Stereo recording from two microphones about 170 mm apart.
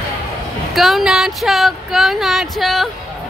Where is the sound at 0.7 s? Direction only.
Centre (ahead or behind).